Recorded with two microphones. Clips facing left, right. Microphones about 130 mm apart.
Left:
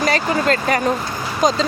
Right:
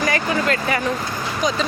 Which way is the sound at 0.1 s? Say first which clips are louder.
Left 3 dB; 35° left (ahead or behind).